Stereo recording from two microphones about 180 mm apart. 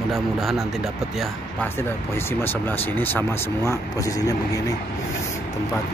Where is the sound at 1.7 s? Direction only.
10° left (ahead or behind).